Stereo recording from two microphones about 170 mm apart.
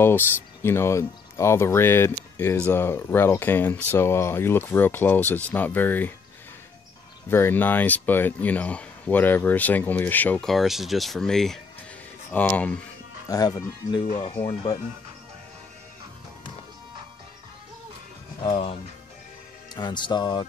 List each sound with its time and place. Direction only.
0.0 s speech: 15° left (ahead or behind)
7.2 s speech: 15° left (ahead or behind)
13.3 s speech: 20° left (ahead or behind)
14.1 s speech: 30° left (ahead or behind)
18.4 s speech: 35° left (ahead or behind)